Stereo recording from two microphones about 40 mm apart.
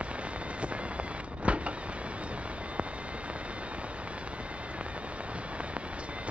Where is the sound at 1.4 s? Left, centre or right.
Right.